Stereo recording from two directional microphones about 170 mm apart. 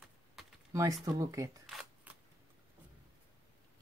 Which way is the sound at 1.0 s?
20° right (ahead or behind).